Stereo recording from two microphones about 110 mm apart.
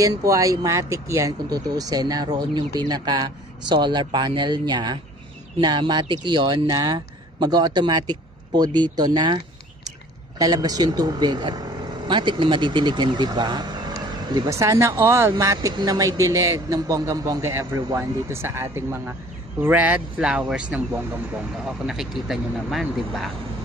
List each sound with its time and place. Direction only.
0.0 s speech: 30° right (ahead or behind)
10.4 s speech: 35° right (ahead or behind)
14.5 s speech: 30° right (ahead or behind); by 20.6 s 10° right (ahead or behind)
21.8 s speech: 5° right (ahead or behind)